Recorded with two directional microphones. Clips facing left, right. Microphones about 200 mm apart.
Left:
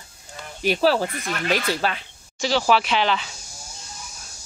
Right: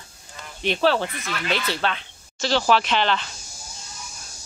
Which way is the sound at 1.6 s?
10° left (ahead or behind).